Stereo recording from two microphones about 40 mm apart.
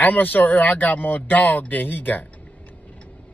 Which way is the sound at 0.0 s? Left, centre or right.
Left.